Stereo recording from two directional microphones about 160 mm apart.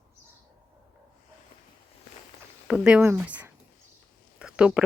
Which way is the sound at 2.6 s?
5° right (ahead or behind).